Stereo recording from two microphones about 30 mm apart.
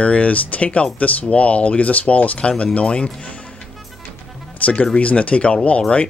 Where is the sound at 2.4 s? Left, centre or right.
Left.